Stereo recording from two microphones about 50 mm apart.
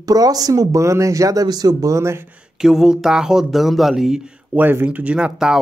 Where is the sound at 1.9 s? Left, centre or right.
Right.